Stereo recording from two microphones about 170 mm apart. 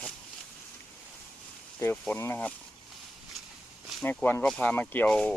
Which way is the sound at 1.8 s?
10° left (ahead or behind).